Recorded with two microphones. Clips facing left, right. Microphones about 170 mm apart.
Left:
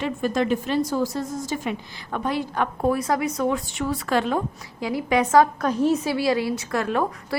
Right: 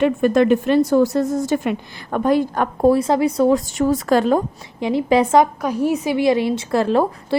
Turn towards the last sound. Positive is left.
turn(degrees=-30)  # may be behind; listen again after turning